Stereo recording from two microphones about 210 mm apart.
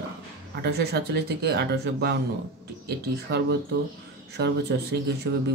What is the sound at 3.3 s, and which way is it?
Speech, 55° right (ahead or behind).